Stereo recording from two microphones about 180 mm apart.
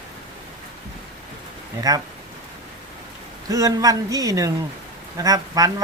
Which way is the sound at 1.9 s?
20° right (ahead or behind).